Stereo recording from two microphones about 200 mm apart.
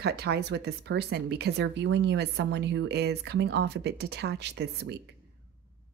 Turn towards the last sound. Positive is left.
turn(degrees=-60)  # may be behind; listen again after turning